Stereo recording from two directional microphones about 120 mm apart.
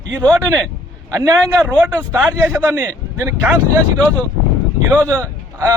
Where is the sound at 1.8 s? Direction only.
15° right (ahead or behind).